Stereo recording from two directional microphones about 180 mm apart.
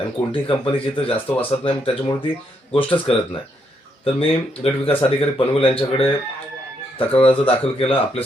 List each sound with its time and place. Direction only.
0.3 s speech: 30° left (ahead or behind)